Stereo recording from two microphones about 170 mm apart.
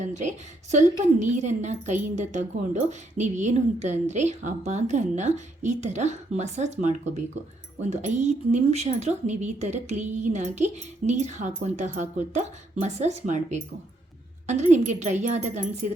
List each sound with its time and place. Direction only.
0.0 s a woman's voice: 45° right (ahead or behind)